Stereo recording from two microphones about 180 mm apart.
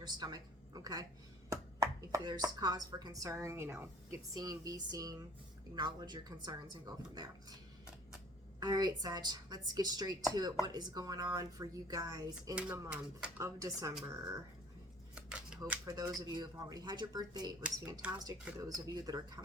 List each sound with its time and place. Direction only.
0.0 s a woman's voice: 20° right (ahead or behind)
8.6 s speech: 20° right (ahead or behind)
12.5 s speech: 5° right (ahead or behind)
13.6 s speech: 20° right (ahead or behind)
15.1 s shuffling cards: 5° right (ahead or behind)
15.9 s speech: 20° right (ahead or behind)
18.0 s speech: 10° right (ahead or behind)
19.1 s speech: 20° right (ahead or behind)